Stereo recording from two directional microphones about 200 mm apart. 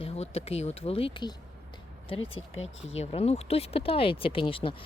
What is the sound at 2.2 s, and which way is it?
Speech, 90° left.